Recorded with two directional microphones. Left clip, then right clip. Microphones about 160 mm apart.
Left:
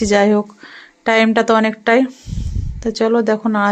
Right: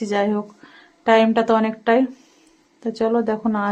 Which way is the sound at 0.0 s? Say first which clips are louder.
Left 8 dB; 15° left (ahead or behind).